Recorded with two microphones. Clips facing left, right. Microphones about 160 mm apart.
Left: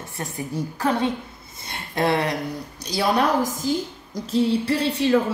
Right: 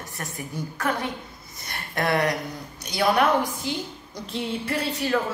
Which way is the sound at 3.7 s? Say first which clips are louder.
Left 6 dB; 40° left (ahead or behind).